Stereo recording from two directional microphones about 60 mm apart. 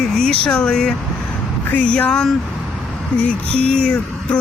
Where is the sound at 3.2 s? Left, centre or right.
Centre.